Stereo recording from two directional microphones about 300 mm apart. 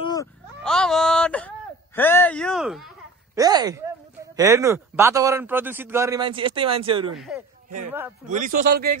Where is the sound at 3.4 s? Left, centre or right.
Centre.